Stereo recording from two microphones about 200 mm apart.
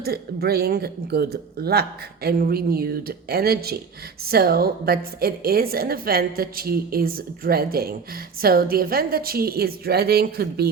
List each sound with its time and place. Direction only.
0.0 s a woman's voice: 50° right (ahead or behind)